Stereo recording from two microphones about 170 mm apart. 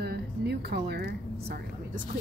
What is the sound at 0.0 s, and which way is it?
Vehicle, 75° right (ahead or behind).